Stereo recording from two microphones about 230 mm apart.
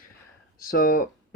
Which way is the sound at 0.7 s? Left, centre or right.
Left.